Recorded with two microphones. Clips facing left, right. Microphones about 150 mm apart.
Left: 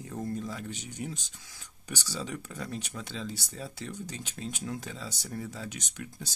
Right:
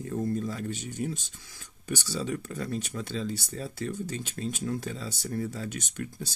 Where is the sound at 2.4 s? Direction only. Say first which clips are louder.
Right 5 dB; 15° left (ahead or behind).